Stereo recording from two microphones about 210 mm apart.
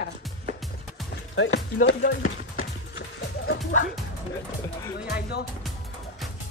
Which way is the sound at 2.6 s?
60° left (ahead or behind).